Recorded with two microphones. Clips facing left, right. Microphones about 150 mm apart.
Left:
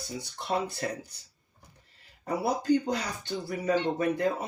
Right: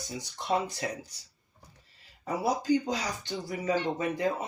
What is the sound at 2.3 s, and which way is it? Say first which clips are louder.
Speech: left 1 dB; 60° left (ahead or behind).